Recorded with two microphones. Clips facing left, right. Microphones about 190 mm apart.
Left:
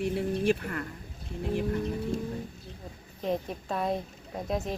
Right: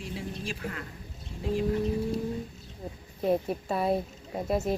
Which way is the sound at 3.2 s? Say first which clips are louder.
Right 4 dB; 10° right (ahead or behind).